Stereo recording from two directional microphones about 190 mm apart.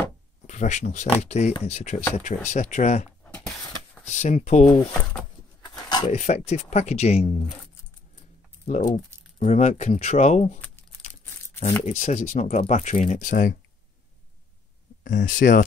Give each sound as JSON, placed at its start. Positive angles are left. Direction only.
{"t": 0.5, "sound": "speech", "side_deg": 40}
{"t": 5.6, "sound": "a sound", "side_deg": 20}
{"t": 6.0, "sound": "speech", "side_deg": 40}
{"t": 8.6, "sound": "speech", "side_deg": 35}
{"t": 11.8, "sound": "speech", "side_deg": 40}
{"t": 15.0, "sound": "speech", "side_deg": 45}